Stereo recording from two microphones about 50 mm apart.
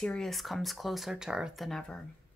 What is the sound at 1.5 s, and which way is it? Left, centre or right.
Speech, centre.